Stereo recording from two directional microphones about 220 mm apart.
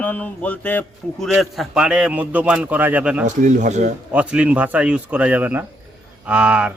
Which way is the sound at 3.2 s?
35° right (ahead or behind).